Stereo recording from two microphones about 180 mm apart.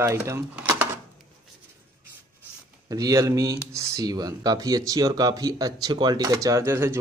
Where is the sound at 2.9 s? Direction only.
20° right (ahead or behind).